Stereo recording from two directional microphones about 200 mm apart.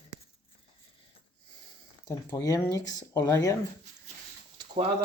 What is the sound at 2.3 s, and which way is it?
Speech, 15° left (ahead or behind).